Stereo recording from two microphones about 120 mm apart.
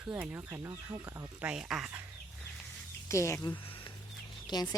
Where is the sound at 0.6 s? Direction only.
25° right (ahead or behind).